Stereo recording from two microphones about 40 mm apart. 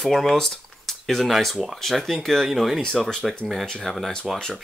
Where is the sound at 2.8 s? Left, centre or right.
Centre.